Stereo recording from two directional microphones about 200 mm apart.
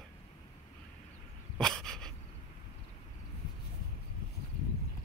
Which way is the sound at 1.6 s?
5° left (ahead or behind).